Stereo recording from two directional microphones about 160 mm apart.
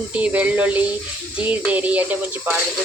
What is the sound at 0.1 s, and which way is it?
Speech, 10° right (ahead or behind).